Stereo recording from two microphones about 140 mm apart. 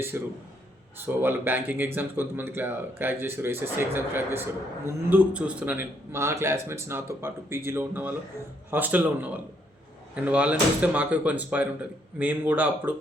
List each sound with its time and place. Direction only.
0.1 s speech: 15° right (ahead or behind)